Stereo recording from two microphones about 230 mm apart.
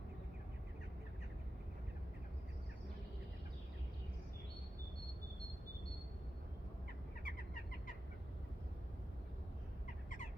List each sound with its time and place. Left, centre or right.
7.3 s bird: left